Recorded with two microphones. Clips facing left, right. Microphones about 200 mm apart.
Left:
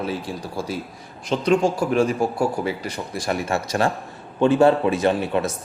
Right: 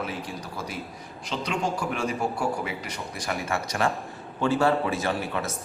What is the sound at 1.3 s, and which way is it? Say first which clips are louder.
Speech: left 12 dB; 50° left (ahead or behind).